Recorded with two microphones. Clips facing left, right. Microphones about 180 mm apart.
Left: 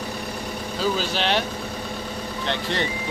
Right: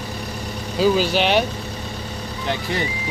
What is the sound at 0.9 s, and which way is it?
Speech, 15° right (ahead or behind).